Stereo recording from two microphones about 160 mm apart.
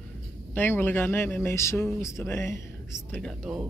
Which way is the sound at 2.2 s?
15° left (ahead or behind).